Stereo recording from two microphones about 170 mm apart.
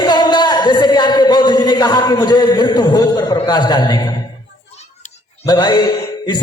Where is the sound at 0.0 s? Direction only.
25° left (ahead or behind).